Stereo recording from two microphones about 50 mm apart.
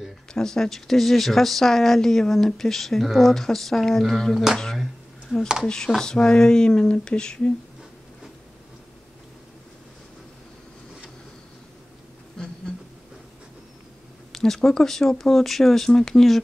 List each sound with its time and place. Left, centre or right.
0.3 s speech: centre
5.3 s speech: centre
5.9 s speech: centre
14.3 s speech: centre